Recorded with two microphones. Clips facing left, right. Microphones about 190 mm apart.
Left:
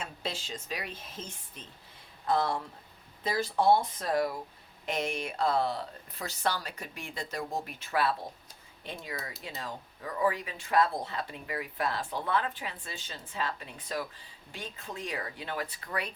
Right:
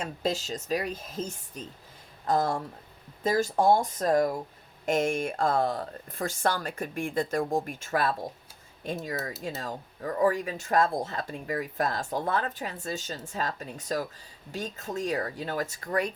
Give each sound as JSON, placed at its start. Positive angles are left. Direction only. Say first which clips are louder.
{"t": 0.0, "sound": "speech", "louder": "right 8 dB", "side_deg": -45}